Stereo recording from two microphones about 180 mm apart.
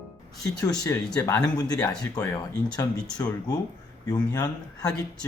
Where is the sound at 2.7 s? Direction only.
20° left (ahead or behind).